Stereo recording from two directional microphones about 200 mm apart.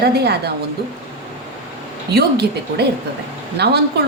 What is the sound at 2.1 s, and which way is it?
Speech, 55° right (ahead or behind).